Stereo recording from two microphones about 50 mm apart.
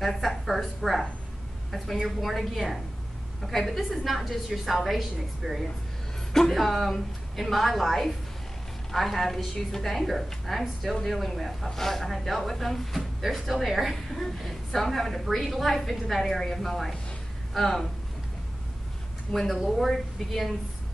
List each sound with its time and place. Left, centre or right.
0.0 s a woman's voice: centre
19.3 s speech: centre